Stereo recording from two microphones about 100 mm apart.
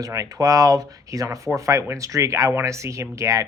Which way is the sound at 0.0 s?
35° right (ahead or behind).